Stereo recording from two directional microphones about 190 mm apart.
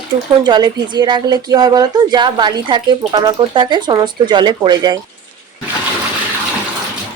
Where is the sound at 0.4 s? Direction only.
20° right (ahead or behind).